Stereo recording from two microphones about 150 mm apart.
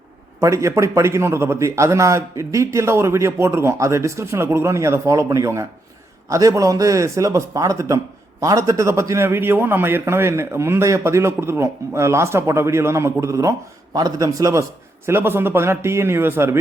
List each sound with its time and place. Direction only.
0.3 s a man's voice: 20° right (ahead or behind)